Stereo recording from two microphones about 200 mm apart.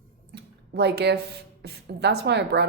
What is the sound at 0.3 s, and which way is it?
Speech, 55° right (ahead or behind).